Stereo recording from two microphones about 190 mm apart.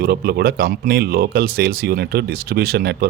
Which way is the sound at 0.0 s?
55° right (ahead or behind).